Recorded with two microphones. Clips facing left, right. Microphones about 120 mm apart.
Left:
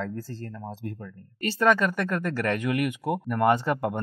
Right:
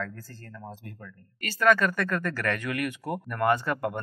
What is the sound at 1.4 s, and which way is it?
Speech, 25° left (ahead or behind).